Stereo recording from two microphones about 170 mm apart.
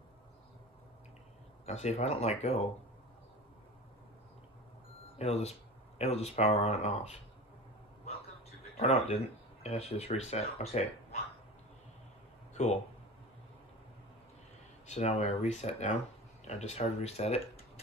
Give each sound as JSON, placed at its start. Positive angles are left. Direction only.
{"t": 1.7, "sound": "speech", "side_deg": 40}
{"t": 5.2, "sound": "speech", "side_deg": 40}
{"t": 8.7, "sound": "speech", "side_deg": 35}
{"t": 14.9, "sound": "speech", "side_deg": 40}